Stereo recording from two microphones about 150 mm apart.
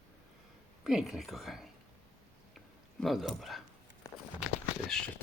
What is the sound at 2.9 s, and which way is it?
Speech, centre (ahead or behind).